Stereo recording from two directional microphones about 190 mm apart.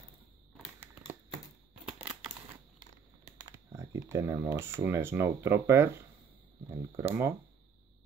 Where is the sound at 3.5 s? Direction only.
20° right (ahead or behind).